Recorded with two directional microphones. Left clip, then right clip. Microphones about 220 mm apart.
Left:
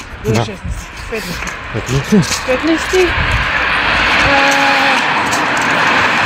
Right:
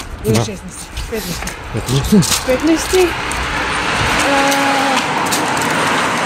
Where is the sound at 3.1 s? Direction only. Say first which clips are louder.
Left 5 dB; 60° right (ahead or behind).